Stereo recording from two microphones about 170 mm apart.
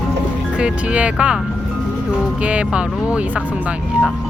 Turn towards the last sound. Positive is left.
turn(degrees=-5)  # may be behind; listen again after turning